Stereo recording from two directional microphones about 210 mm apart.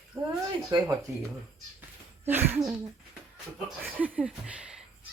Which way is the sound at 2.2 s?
10° right (ahead or behind).